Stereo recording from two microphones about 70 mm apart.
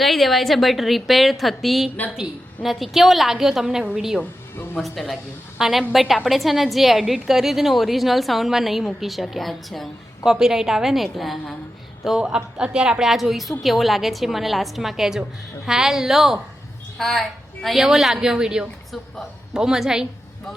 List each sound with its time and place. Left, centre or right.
0.0 s a woman's voice: centre
4.2 s music: left
4.8 s a woman's voice: centre